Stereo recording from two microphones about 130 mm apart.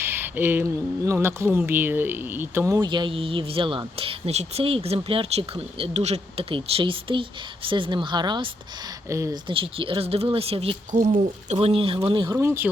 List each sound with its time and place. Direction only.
0.0 s speech: 15° right (ahead or behind)
2.7 s speech: 35° right (ahead or behind)
4.0 s speech: 55° right (ahead or behind)
5.8 s speech: 55° right (ahead or behind)
6.5 s speech: 40° right (ahead or behind)
9.0 s speech: 20° right (ahead or behind)
9.3 s speech: 40° right (ahead or behind)
12.4 s speech: 20° right (ahead or behind)